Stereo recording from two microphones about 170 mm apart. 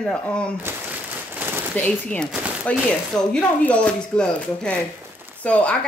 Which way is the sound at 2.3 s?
5° right (ahead or behind).